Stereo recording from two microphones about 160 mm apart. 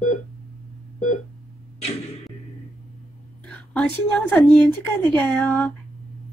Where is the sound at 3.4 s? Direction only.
10° left (ahead or behind).